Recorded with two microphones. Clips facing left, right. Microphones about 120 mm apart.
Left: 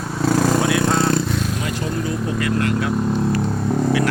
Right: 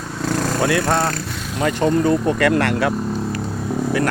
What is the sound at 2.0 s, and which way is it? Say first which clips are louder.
Speech: right 6 dB; 65° right (ahead or behind).